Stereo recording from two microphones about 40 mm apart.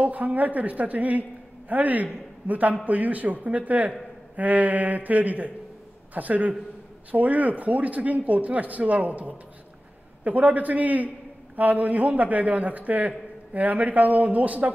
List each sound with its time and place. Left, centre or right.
0.0 s a woman's voice: right